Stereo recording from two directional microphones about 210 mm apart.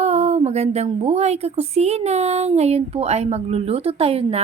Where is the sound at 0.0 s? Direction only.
30° right (ahead or behind).